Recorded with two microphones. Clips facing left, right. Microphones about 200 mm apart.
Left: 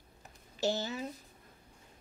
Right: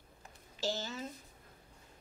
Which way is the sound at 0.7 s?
15° left (ahead or behind).